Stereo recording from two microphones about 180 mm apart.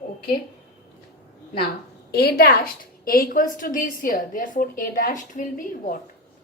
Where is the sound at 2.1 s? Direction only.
60° left (ahead or behind).